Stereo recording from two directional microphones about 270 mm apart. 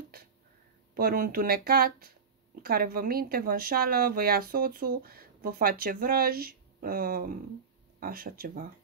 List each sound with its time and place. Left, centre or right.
0.9 s a woman's voice: right